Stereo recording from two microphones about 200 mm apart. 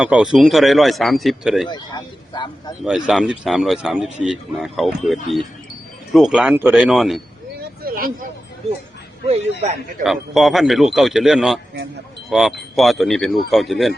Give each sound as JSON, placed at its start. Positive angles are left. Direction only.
{"t": 0.0, "sound": "speech", "side_deg": -5}
{"t": 1.6, "sound": "speech", "side_deg": 20}
{"t": 2.8, "sound": "speech", "side_deg": 0}
{"t": 7.8, "sound": "a sound", "side_deg": -45}
{"t": 9.3, "sound": "speech", "side_deg": -30}
{"t": 10.0, "sound": "speech", "side_deg": 0}